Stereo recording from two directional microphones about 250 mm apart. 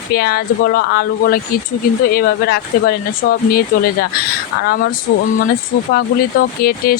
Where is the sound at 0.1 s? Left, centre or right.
Left.